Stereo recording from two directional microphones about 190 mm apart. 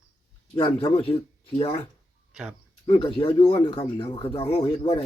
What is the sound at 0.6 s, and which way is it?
Speech, 25° left (ahead or behind).